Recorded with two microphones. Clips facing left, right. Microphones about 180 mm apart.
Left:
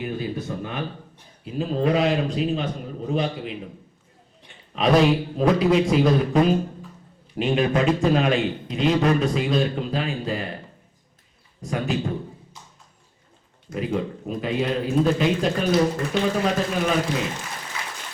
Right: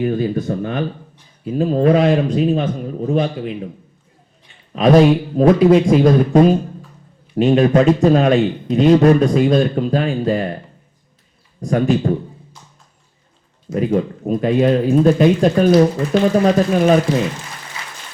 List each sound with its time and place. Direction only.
0.0 s a man's voice: 50° right (ahead or behind)
4.7 s a man's voice: 45° right (ahead or behind)
11.6 s a man's voice: 45° right (ahead or behind)
13.7 s a man's voice: 45° right (ahead or behind)